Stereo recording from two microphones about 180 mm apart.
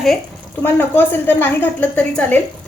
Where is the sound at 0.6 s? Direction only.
10° left (ahead or behind).